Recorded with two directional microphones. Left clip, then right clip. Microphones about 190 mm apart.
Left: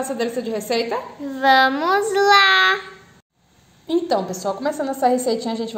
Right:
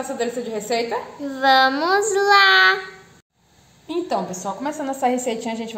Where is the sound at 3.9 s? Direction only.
35° left (ahead or behind).